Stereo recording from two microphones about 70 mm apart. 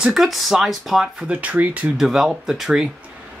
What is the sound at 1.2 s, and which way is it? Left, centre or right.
Speech, right.